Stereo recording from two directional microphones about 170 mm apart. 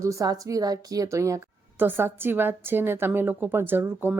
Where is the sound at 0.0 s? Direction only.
20° right (ahead or behind).